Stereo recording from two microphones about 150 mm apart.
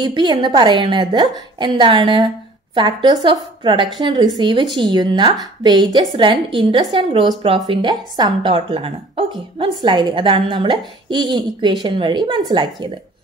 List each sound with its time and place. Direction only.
0.0 s a woman's voice: 30° right (ahead or behind)